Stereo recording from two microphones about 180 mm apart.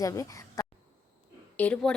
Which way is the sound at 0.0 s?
15° left (ahead or behind).